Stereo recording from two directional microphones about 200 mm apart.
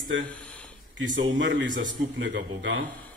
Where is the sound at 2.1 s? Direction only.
70° right (ahead or behind).